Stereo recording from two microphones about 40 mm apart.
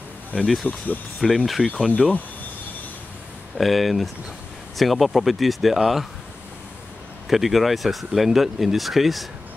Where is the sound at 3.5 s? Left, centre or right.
Centre.